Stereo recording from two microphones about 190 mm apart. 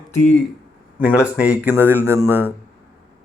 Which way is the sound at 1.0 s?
5° right (ahead or behind).